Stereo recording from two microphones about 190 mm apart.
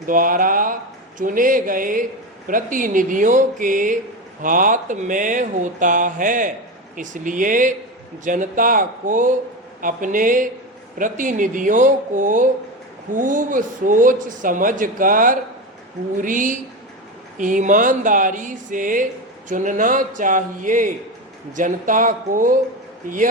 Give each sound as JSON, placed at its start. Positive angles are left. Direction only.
{"t": 0.0, "sound": "speech", "side_deg": -45}